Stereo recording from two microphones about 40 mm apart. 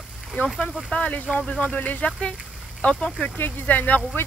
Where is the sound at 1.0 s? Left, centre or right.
Left.